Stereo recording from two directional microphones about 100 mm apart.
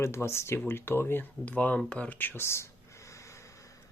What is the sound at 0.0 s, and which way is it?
Speech, 25° left (ahead or behind).